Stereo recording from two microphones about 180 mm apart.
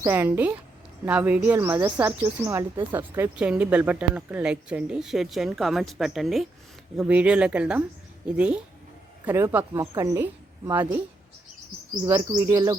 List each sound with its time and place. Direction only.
0.0 s speech: 15° right (ahead or behind)
9.2 s speech: 10° right (ahead or behind)
12.0 s speech: 20° right (ahead or behind)